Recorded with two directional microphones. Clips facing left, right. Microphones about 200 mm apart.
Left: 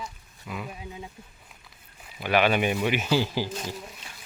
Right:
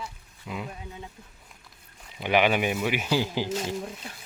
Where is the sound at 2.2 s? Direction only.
15° right (ahead or behind).